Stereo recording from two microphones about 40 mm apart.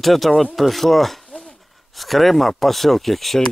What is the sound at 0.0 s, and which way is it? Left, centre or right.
Speech, centre.